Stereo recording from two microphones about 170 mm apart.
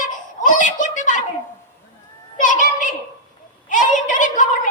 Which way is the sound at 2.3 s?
50° left (ahead or behind).